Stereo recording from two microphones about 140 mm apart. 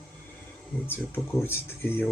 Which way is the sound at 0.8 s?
15° left (ahead or behind).